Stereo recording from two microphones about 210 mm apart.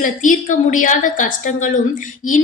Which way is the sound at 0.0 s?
40° left (ahead or behind).